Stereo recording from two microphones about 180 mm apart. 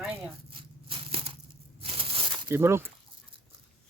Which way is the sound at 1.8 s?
30° right (ahead or behind).